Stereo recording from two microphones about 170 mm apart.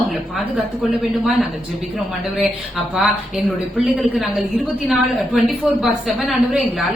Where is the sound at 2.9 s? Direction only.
Centre (ahead or behind).